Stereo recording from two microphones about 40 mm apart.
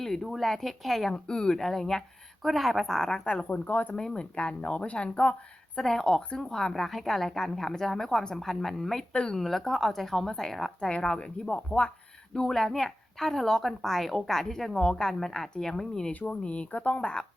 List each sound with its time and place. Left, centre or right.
0.0 s a sound: centre
0.3 s a woman's voice: centre
1.1 s speech: left
1.5 s a woman's voice: centre
2.5 s a woman's voice: centre
3.5 s speech: left
3.9 s speech: centre
5.8 s a woman's voice: centre
6.8 s a woman's voice: centre
10.8 s speech: left
12.5 s a woman's voice: centre
14.8 s a woman's voice: centre
16.3 s speech: left